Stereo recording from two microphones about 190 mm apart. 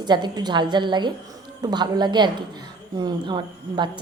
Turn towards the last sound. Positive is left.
turn(degrees=-25)  # may be behind; listen again after turning